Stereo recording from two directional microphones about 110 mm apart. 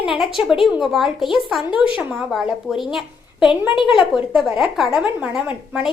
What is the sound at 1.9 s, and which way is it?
A woman's voice, 10° right (ahead or behind).